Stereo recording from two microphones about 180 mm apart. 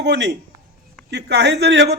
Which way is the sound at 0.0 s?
70° right (ahead or behind).